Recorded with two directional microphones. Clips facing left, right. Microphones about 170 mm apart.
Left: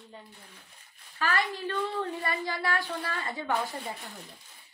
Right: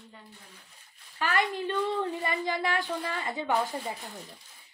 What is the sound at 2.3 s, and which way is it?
A woman's voice, 20° right (ahead or behind).